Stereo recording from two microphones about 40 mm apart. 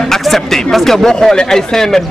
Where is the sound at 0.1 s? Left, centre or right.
Centre.